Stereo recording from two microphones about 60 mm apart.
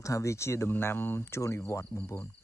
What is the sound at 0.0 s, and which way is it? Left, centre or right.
Speech, left.